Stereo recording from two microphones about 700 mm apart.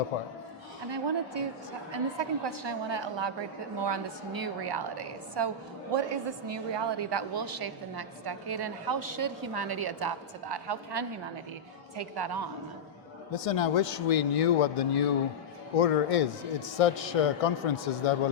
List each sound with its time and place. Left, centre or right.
0.1 s speech: left
0.9 s a woman's voice: right
13.3 s speech: left